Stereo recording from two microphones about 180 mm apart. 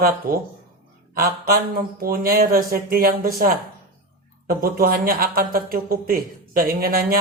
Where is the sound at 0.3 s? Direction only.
55° right (ahead or behind).